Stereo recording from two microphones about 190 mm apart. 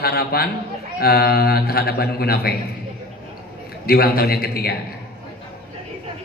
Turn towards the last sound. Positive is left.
turn(degrees=55)  # may be behind; listen again after turning